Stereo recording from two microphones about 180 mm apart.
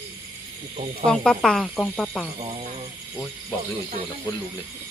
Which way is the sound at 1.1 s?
5° left (ahead or behind).